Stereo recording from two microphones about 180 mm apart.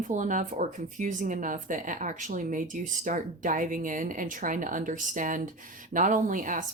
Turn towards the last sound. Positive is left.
turn(degrees=-45)  # may be behind; listen again after turning